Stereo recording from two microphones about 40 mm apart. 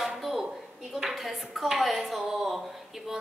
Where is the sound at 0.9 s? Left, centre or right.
Centre.